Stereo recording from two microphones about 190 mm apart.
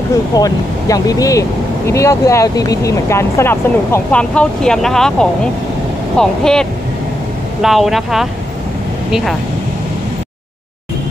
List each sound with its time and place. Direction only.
0.3 s speech: 20° left (ahead or behind); by 9.4 s centre (ahead or behind)